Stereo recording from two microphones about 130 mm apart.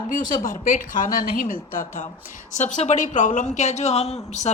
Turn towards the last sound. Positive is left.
turn(degrees=60)  # may be behind; listen again after turning